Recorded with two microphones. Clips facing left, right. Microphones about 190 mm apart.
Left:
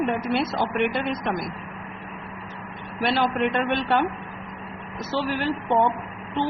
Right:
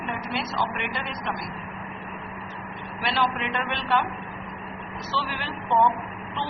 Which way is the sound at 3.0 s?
50° left (ahead or behind).